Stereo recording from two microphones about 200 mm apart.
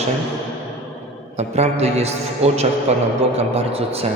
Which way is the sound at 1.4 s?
35° right (ahead or behind).